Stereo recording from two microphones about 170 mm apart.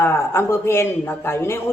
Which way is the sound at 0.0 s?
15° left (ahead or behind).